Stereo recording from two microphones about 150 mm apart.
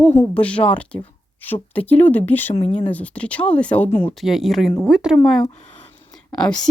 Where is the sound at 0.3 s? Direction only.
10° left (ahead or behind).